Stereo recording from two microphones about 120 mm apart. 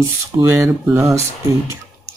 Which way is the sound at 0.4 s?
25° right (ahead or behind).